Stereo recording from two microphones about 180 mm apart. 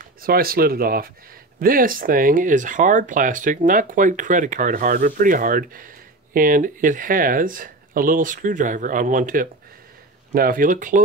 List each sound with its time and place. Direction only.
0.0 s speech: 55° right (ahead or behind)